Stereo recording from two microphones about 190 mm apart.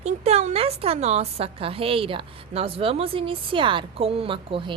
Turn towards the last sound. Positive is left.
turn(degrees=-30)  # may be behind; listen again after turning